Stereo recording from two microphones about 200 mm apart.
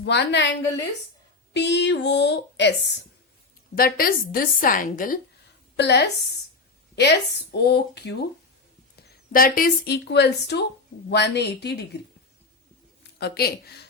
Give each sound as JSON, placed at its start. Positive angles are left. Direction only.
{"t": 0.0, "sound": "speech", "side_deg": 60}
{"t": 1.5, "sound": "speech", "side_deg": 60}
{"t": 3.8, "sound": "a woman's voice", "side_deg": 45}
{"t": 5.7, "sound": "a woman's voice", "side_deg": 60}
{"t": 9.3, "sound": "speech", "side_deg": 45}
{"t": 13.1, "sound": "a woman's voice", "side_deg": 50}